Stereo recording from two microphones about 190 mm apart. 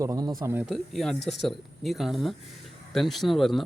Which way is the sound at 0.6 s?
Centre (ahead or behind).